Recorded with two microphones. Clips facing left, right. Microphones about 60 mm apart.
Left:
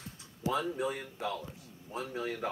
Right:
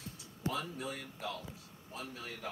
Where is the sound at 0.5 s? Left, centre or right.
Left.